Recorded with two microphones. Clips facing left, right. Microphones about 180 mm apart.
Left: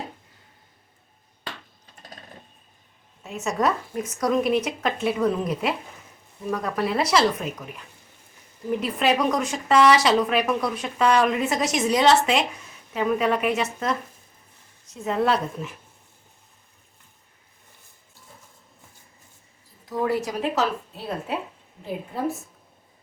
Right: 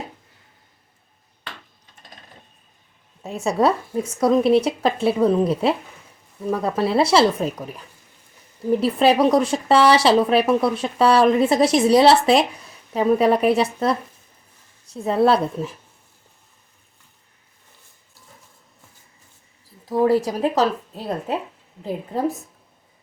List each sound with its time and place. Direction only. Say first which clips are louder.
3.2 s speech: right 5 dB; 30° right (ahead or behind)
8.8 s speech: right 6 dB; 30° right (ahead or behind)
19.8 s speech: right 7 dB; 35° right (ahead or behind)